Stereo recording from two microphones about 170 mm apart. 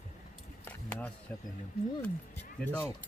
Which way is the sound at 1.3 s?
10° left (ahead or behind).